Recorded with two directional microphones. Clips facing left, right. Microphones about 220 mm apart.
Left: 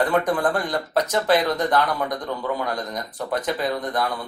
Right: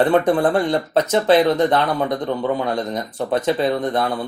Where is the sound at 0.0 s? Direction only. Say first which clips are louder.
Right 5 dB; 25° right (ahead or behind).